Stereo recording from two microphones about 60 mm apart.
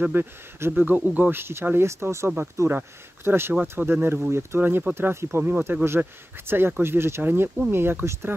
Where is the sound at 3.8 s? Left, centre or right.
Right.